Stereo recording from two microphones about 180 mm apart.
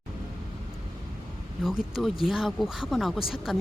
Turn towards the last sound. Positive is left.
turn(degrees=0)  # may be behind; listen again after turning